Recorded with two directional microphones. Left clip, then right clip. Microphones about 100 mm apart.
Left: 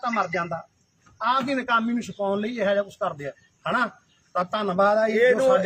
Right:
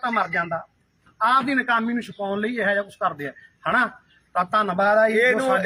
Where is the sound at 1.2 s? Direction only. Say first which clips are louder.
Right 4 dB; 45° left (ahead or behind).